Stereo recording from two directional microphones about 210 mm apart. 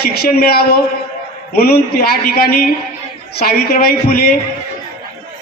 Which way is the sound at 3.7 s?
45° left (ahead or behind).